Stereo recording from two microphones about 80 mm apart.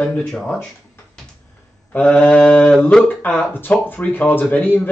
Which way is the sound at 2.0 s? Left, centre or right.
Centre.